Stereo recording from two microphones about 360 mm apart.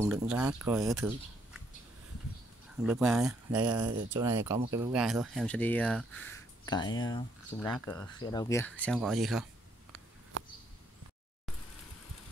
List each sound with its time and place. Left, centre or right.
0.0 s speech: centre
2.8 s speech: centre